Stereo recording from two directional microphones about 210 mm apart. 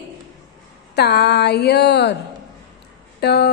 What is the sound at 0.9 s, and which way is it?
Speech, 50° left (ahead or behind).